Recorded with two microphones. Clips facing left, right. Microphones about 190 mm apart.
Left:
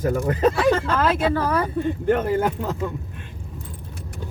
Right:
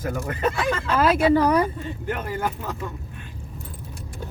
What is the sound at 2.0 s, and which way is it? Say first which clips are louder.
Speech: left 7 dB; 50° left (ahead or behind).